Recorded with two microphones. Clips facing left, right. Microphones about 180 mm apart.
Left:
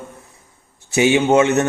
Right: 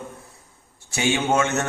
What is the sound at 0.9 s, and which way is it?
Speech, 20° left (ahead or behind).